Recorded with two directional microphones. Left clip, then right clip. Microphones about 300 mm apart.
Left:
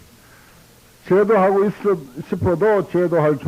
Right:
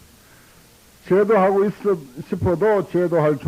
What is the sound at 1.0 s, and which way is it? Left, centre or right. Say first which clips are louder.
A man's voice: left 1 dB; left.